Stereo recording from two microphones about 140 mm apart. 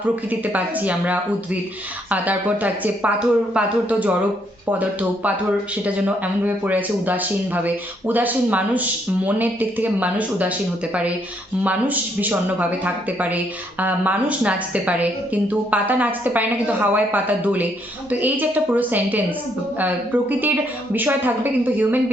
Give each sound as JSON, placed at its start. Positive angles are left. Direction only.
{"t": 0.0, "sound": "speech", "side_deg": -10}
{"t": 11.6, "sound": "speech", "side_deg": -10}